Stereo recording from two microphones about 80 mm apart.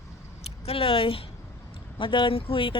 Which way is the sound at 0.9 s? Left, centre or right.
Left.